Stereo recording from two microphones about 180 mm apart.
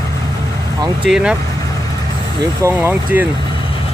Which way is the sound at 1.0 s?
5° right (ahead or behind).